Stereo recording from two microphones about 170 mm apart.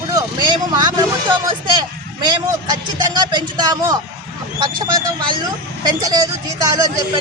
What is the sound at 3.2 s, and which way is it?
Speech, 25° right (ahead or behind).